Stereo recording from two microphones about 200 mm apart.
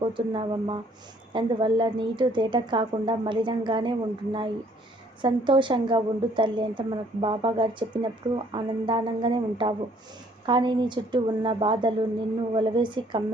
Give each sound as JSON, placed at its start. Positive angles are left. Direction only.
{"t": 0.0, "sound": "a woman's voice", "side_deg": -25}